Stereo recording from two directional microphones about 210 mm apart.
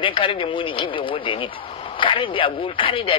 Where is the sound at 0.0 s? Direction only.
25° left (ahead or behind).